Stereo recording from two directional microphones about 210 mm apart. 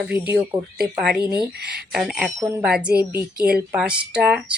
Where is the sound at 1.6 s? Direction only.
50° right (ahead or behind).